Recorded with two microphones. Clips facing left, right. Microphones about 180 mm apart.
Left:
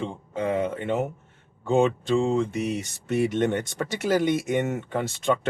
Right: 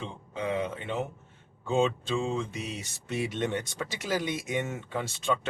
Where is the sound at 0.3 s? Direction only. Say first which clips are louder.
Left 5 dB; 50° left (ahead or behind).